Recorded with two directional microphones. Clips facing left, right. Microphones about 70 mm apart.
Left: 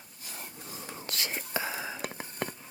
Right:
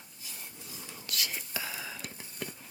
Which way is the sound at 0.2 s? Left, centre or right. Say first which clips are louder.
Left 5 dB; left.